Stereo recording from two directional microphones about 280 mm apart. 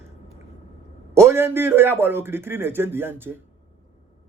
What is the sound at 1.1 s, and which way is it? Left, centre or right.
A man's voice, centre.